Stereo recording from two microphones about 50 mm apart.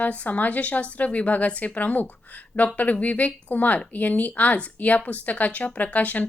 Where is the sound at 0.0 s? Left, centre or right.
Left.